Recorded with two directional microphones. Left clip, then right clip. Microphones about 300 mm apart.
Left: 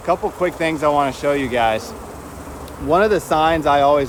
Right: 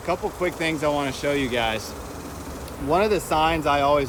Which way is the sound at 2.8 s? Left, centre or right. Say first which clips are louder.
Left 6 dB; centre.